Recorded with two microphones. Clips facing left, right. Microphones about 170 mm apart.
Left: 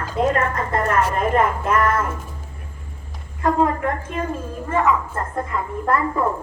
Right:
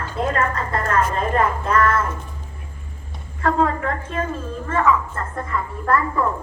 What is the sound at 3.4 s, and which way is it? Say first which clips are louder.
A woman's voice: left 1 dB; 15° left (ahead or behind).